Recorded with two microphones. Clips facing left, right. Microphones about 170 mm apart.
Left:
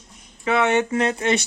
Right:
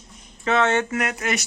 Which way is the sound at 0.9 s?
30° left (ahead or behind).